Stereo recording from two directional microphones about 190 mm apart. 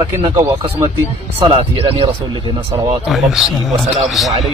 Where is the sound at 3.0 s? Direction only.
Centre (ahead or behind).